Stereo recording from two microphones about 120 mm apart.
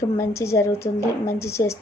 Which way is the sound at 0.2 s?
25° left (ahead or behind).